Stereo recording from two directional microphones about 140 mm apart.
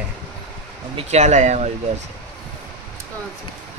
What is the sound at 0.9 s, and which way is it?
Speech, 55° right (ahead or behind).